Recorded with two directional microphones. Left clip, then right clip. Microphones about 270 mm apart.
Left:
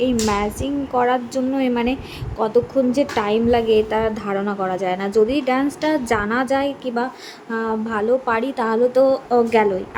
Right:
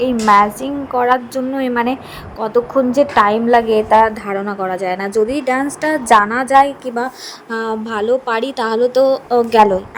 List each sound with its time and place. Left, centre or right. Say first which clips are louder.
0.0 s a woman's voice: right 9 dB; centre